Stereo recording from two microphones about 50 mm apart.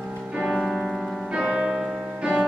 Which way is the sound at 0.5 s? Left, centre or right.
Centre.